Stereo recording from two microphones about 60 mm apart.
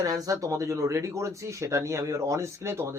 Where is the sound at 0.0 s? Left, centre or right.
Right.